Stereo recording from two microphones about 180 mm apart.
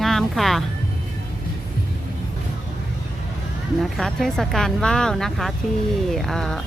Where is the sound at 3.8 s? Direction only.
Centre (ahead or behind).